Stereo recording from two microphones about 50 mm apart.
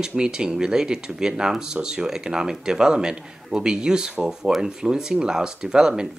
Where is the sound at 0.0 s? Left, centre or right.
Centre.